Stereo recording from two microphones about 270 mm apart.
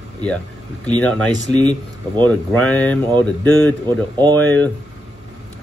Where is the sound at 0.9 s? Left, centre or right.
Centre.